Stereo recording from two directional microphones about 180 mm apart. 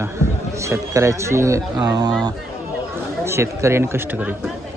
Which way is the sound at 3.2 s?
15° right (ahead or behind).